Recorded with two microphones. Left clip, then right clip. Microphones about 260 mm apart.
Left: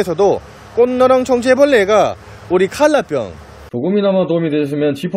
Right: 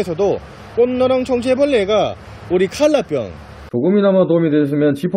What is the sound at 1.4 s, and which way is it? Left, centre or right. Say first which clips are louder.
A man's voice: left 4 dB; centre.